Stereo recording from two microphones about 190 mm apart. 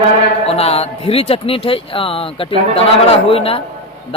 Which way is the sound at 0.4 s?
30° left (ahead or behind).